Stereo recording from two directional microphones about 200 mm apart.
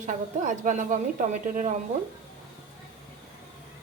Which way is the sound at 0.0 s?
40° right (ahead or behind).